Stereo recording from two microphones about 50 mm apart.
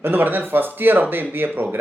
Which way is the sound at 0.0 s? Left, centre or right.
Right.